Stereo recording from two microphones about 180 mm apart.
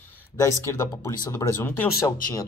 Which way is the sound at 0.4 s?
15° left (ahead or behind).